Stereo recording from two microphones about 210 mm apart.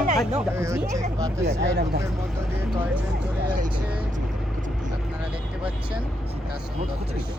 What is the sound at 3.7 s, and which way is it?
Vehicle, 5° right (ahead or behind).